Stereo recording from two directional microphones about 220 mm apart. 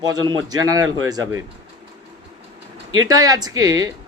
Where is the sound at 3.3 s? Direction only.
15° right (ahead or behind).